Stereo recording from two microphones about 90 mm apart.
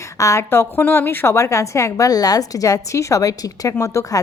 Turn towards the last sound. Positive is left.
turn(degrees=40)  # may be behind; listen again after turning